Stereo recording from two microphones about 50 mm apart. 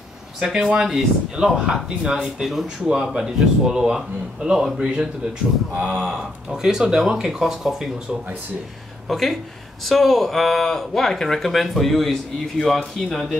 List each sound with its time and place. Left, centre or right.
0.4 s speech: centre
5.8 s speech: right
6.5 s speech: centre
9.1 s speech: centre